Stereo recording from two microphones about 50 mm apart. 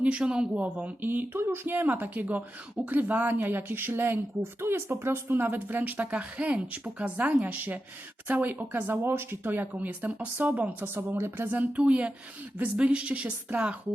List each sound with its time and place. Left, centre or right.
0.0 s speech: centre
7.4 s speech: right
8.9 s speech: right
10.8 s speech: right
11.5 s speech: right